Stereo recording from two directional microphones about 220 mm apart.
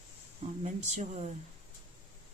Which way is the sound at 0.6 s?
35° right (ahead or behind).